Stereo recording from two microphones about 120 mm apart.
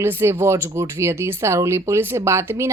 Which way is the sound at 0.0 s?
20° right (ahead or behind).